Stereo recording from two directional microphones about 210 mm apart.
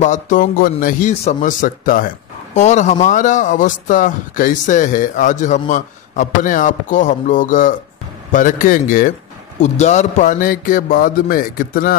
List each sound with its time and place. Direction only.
0.0 s speech: 35° left (ahead or behind)